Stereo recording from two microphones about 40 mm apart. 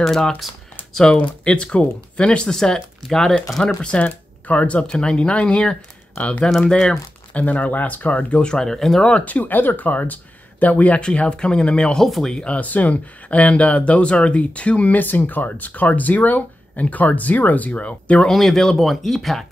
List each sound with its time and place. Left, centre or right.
0.0 s speech: centre
1.1 s speech: left; by 3.3 s centre
3.8 s speech: left
4.8 s speech: left
6.1 s speech: left
6.6 s speech: left
7.3 s speech: left
8.4 s speech: left
8.6 s speech: centre
9.2 s speech: left
11.0 s speech: left
12.0 s speech: centre
12.4 s speech: left
18.3 s speech: centre